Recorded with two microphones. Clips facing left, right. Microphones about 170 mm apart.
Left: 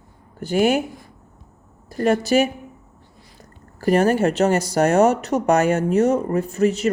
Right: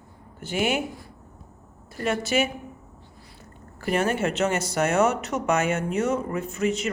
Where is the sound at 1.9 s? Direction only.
35° left (ahead or behind).